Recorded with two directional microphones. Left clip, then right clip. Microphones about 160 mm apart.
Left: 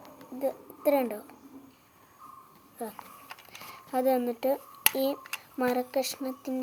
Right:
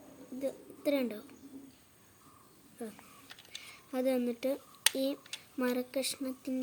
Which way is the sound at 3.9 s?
30° right (ahead or behind).